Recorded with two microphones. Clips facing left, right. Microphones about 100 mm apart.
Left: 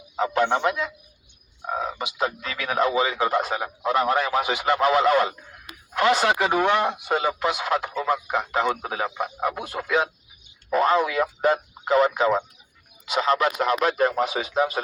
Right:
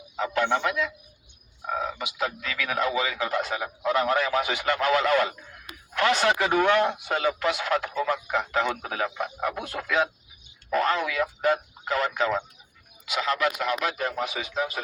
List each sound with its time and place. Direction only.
0.2 s speech: 25° left (ahead or behind)
2.0 s speech: 30° left (ahead or behind)
11.2 s speech: 35° left (ahead or behind)
11.9 s speech: 20° left (ahead or behind)